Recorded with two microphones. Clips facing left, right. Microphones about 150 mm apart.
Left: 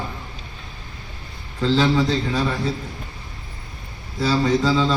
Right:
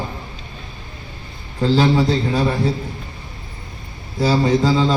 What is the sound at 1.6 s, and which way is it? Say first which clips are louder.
Speech: right 3 dB; 35° right (ahead or behind).